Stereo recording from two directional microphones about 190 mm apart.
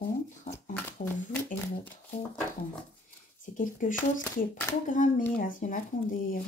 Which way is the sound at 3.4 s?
45° left (ahead or behind).